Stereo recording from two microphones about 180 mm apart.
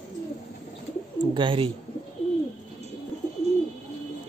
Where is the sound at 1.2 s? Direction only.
25° right (ahead or behind).